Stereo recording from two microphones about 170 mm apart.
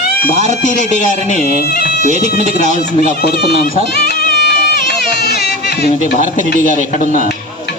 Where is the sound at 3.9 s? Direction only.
70° left (ahead or behind).